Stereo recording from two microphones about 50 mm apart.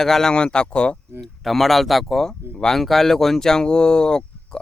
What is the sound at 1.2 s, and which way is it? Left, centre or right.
Speech, centre.